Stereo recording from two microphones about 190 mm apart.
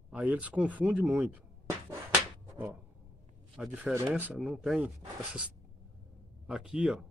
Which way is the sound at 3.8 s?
10° right (ahead or behind).